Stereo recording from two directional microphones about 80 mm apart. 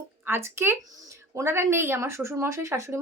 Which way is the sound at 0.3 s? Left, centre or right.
Right.